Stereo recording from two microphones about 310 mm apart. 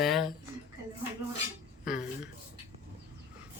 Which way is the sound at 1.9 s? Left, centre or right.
Centre.